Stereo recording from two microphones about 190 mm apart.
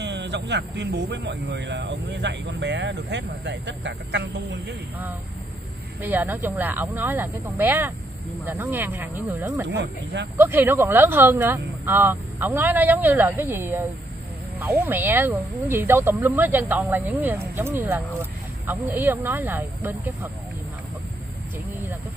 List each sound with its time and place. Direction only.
0.0 s speech: 65° right (ahead or behind)
6.0 s speech: 10° right (ahead or behind)
9.7 s speech: 70° right (ahead or behind)
10.3 s speech: 10° right (ahead or behind)